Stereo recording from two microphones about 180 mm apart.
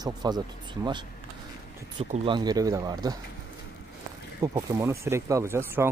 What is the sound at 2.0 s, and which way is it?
Speech, 35° right (ahead or behind).